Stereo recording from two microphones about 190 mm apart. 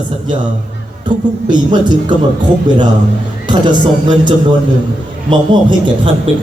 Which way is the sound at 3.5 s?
25° right (ahead or behind).